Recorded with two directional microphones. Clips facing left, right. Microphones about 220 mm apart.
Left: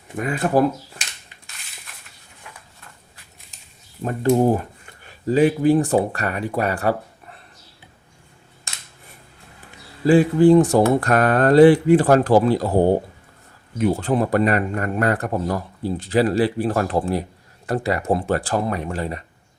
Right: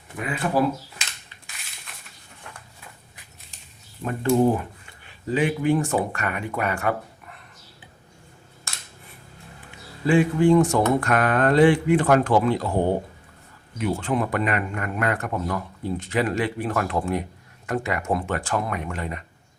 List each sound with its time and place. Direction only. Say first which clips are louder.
0.2 s speech: left 5 dB; 45° left (ahead or behind)
4.0 s speech: left 2 dB; 40° left (ahead or behind)
10.1 s speech: left 5 dB; 35° left (ahead or behind)